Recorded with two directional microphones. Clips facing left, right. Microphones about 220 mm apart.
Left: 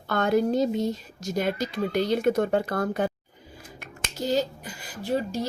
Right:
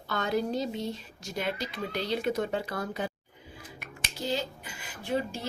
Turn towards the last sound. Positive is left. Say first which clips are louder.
# left 4 dB
turn(degrees=40)  # may be behind; listen again after turning